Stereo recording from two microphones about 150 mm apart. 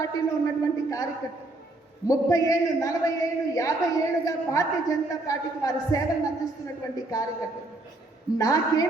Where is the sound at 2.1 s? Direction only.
20° left (ahead or behind).